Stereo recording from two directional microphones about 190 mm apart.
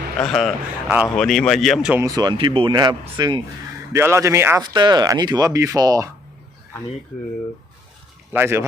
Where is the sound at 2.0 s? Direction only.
20° right (ahead or behind).